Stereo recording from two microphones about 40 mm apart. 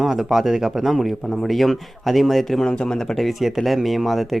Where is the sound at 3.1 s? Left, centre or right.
Centre.